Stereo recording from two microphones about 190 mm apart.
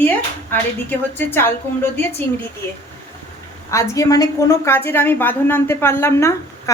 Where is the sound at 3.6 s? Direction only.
15° left (ahead or behind).